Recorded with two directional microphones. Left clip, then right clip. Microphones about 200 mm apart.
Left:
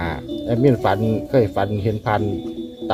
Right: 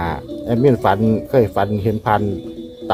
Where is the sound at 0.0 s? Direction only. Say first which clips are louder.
Right 2 dB; 25° right (ahead or behind).